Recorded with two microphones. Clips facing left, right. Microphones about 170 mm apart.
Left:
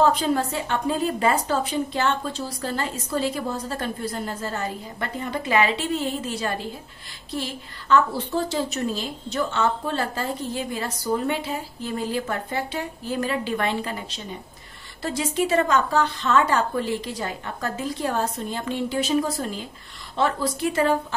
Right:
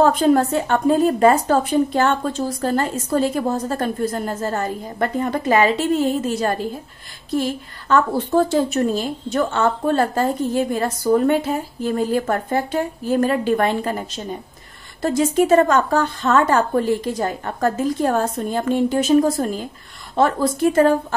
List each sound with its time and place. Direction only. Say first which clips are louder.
0.0 s a woman's voice: right 6 dB; 50° right (ahead or behind)